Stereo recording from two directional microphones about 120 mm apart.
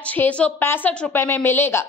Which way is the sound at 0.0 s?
10° left (ahead or behind).